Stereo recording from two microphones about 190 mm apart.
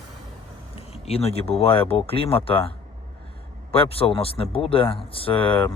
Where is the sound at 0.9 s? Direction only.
30° left (ahead or behind).